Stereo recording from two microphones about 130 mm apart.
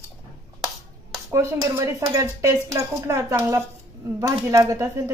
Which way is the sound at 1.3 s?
25° right (ahead or behind).